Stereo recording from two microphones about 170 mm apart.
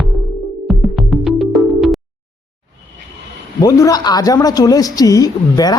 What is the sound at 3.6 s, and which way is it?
A woman's voice, 20° left (ahead or behind).